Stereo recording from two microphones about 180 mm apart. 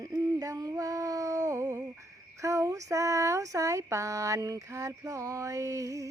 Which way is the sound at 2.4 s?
20° right (ahead or behind).